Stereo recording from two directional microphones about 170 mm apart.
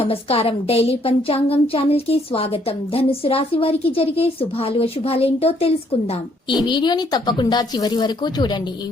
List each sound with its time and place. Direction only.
0.0 s a woman's voice: 35° left (ahead or behind)